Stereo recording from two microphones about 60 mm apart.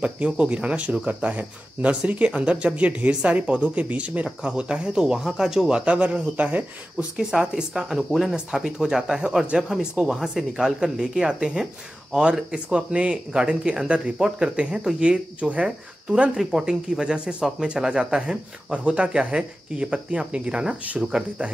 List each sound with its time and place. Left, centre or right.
0.0 s speech: right